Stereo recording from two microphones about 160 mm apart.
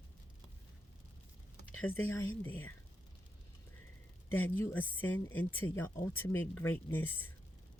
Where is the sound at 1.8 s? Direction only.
15° left (ahead or behind).